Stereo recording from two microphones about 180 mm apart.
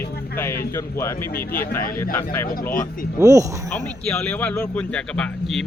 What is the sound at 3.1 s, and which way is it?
Speech, 20° right (ahead or behind).